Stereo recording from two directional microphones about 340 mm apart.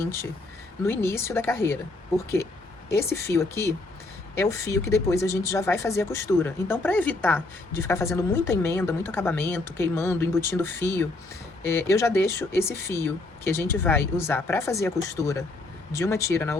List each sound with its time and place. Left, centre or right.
0.0 s a woman's voice: centre